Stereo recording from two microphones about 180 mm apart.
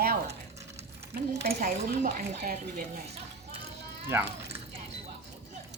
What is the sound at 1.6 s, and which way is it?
Speech, 50° right (ahead or behind).